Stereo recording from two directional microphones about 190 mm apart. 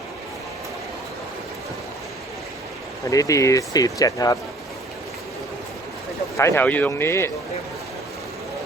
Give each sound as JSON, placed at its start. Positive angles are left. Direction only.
{"t": 3.1, "sound": "speech", "side_deg": 15}
{"t": 6.3, "sound": "speech", "side_deg": 15}